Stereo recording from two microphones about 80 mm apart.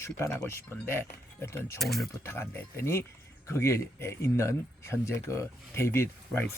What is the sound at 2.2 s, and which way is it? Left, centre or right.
Speech, left.